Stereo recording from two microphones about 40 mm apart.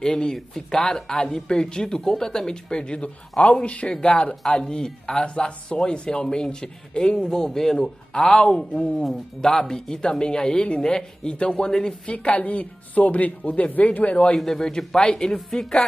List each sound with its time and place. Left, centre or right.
0.0 s a woman's voice: centre
7.2 s a woman's voice: centre
12.1 s speech: left
14.1 s a woman's voice: left
14.4 s a woman's voice: centre